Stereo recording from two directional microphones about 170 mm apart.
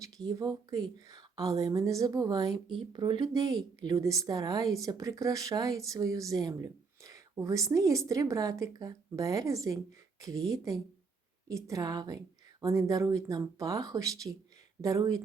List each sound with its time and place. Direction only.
0.0 s a woman's voice: 20° right (ahead or behind)